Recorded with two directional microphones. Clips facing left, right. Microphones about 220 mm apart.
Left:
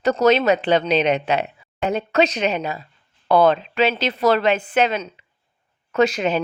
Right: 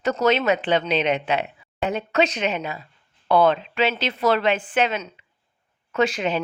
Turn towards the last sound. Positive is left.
turn(degrees=40)  # may be behind; listen again after turning